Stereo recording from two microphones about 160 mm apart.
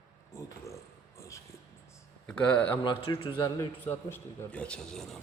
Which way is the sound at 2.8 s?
30° left (ahead or behind).